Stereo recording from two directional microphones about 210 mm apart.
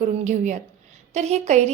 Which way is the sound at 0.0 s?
35° right (ahead or behind).